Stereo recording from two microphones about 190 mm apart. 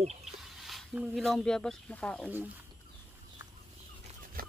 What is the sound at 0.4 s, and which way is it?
Speech, centre (ahead or behind).